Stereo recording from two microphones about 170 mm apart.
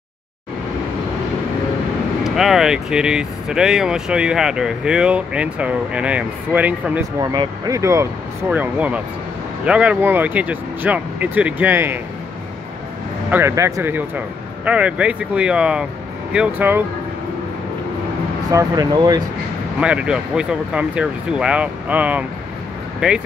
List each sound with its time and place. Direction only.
2.2 s speech: centre (ahead or behind)
7.2 s speech: 20° right (ahead or behind)
13.3 s speech: 15° right (ahead or behind)
18.5 s speech: 20° right (ahead or behind)
19.8 s speech: 5° right (ahead or behind)